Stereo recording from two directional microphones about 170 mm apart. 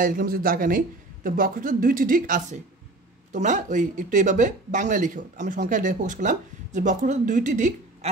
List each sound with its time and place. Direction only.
0.0 s a man's voice: 55° right (ahead or behind)